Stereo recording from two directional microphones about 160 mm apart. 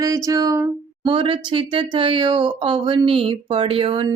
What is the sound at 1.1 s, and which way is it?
Speech, 35° right (ahead or behind).